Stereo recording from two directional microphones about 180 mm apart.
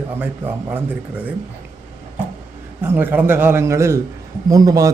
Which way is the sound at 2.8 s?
10° right (ahead or behind).